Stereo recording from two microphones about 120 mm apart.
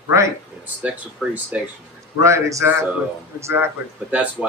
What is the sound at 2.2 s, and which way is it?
Speech, 25° right (ahead or behind).